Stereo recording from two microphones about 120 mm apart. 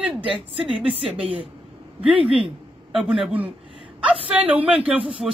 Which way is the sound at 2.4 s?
5° right (ahead or behind).